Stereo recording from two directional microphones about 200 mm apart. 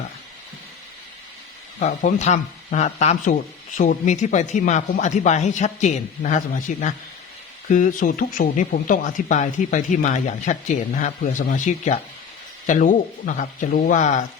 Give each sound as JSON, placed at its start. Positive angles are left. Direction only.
{"t": 1.8, "sound": "speech", "side_deg": 40}